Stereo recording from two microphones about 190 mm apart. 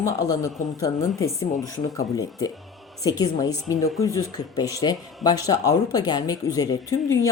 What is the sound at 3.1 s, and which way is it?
A woman's voice, 20° left (ahead or behind).